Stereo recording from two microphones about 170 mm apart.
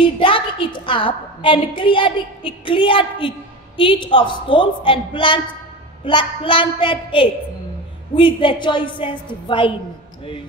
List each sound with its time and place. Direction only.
0.0 s a woman's voice: 30° left (ahead or behind)